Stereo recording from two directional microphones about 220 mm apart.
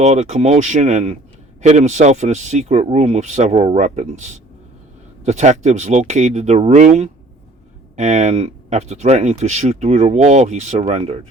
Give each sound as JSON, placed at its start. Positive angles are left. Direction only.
{"t": 0.0, "sound": "speech", "side_deg": -30}